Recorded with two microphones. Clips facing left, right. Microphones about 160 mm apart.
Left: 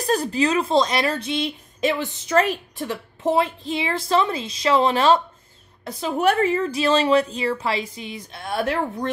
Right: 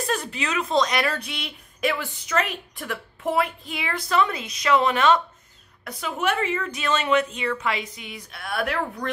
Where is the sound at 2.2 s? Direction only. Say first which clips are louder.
Left 7 dB; 35° left (ahead or behind).